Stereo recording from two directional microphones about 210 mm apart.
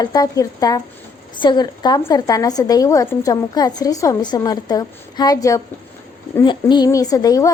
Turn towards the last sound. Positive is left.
turn(degrees=15)  # may be behind; listen again after turning